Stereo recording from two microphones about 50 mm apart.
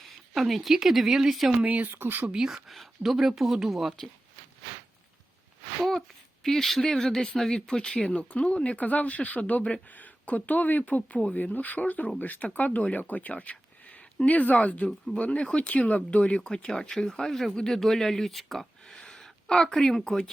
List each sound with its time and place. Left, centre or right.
0.3 s speech: centre
1.6 s speech: right
2.0 s speech: right
2.5 s speech: centre
6.4 s speech: centre